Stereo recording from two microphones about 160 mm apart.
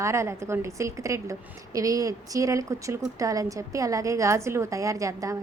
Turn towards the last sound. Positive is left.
turn(degrees=-20)  # may be behind; listen again after turning